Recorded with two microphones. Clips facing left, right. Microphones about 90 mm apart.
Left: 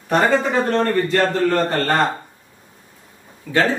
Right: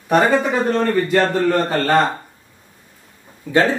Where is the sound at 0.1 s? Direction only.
15° right (ahead or behind).